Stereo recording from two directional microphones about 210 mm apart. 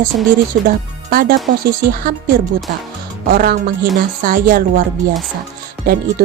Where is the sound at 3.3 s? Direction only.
45° right (ahead or behind).